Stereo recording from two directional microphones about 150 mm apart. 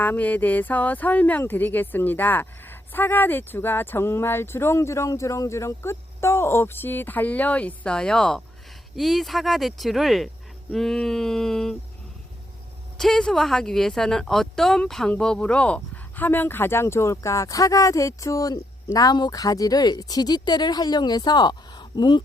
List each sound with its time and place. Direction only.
0.0 s speech: 10° left (ahead or behind)
13.0 s speech: 5° left (ahead or behind); by 22.2 s 30° left (ahead or behind)